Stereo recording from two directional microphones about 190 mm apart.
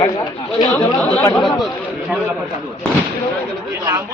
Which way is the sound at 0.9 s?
10° left (ahead or behind).